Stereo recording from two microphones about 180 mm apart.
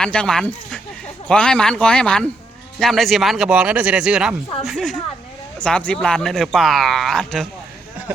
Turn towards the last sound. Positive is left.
turn(degrees=0)  # may be behind; listen again after turning